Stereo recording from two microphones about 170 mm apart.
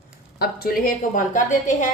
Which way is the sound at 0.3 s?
65° left (ahead or behind).